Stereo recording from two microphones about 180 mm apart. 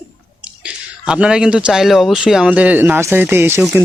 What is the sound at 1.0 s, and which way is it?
Speech, 5° right (ahead or behind).